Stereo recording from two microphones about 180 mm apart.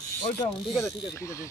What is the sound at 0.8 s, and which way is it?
Speech, 15° left (ahead or behind).